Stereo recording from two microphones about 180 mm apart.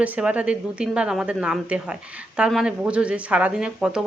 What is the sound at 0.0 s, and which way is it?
Speech, 5° right (ahead or behind).